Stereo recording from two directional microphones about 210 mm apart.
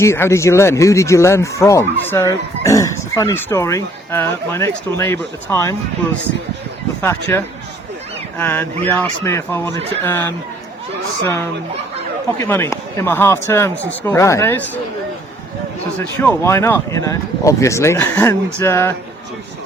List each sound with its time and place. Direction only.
0.0 s speech: 15° left (ahead or behind)
7.0 s speech: 10° left (ahead or behind)
12.4 s speech: 10° left (ahead or behind)
16.0 s speech: 10° left (ahead or behind)